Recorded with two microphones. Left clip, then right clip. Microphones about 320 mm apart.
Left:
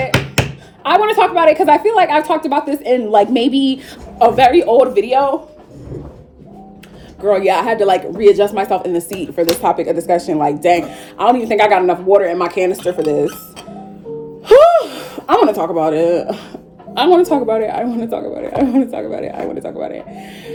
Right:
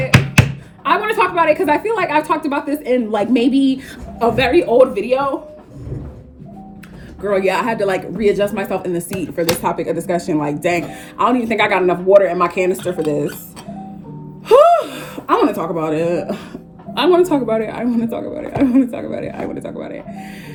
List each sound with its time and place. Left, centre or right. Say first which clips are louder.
0.9 s a woman's voice: left 4 dB; centre
7.3 s a woman's voice: left 4 dB; centre
14.4 s gasp: left 2 dB; centre
16.9 s a woman's voice: left 2 dB; centre